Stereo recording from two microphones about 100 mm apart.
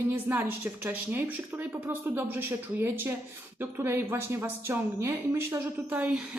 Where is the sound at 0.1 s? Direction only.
20° right (ahead or behind).